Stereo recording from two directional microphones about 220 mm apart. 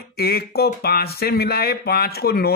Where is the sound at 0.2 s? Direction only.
45° left (ahead or behind).